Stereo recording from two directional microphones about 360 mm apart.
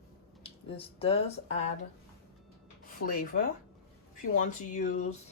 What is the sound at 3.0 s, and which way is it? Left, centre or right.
Speech, left.